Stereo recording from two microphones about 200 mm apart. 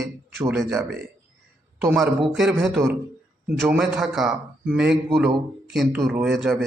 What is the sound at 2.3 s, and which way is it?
Speech, centre (ahead or behind).